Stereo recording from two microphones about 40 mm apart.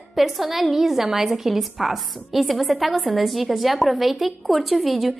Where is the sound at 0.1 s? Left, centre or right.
Centre.